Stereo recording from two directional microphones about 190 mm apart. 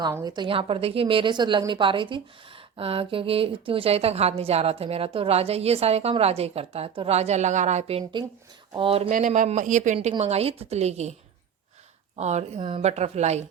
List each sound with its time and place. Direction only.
0.0 s a woman's voice: 15° right (ahead or behind); by 11.1 s 35° right (ahead or behind)
12.1 s a woman's voice: 35° right (ahead or behind)